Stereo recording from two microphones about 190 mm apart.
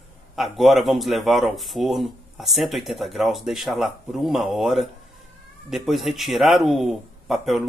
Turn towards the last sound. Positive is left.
turn(degrees=0)  # may be behind; listen again after turning